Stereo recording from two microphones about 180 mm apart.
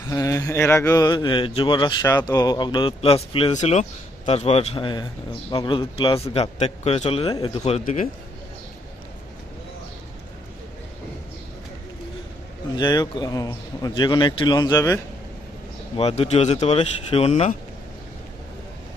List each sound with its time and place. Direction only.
0.0 s a man's voice: 20° left (ahead or behind); by 8.0 s 35° left (ahead or behind)
12.7 s speech: 25° left (ahead or behind)
16.0 s a man's voice: 35° left (ahead or behind)